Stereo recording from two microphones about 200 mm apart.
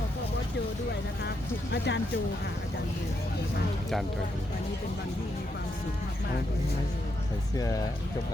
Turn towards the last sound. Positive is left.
turn(degrees=15)  # may be behind; listen again after turning